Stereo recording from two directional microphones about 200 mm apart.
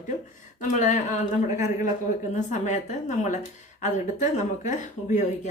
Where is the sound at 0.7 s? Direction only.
35° left (ahead or behind).